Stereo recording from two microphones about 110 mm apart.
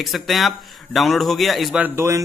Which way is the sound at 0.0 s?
Centre (ahead or behind).